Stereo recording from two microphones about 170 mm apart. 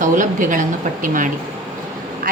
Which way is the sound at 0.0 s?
50° right (ahead or behind).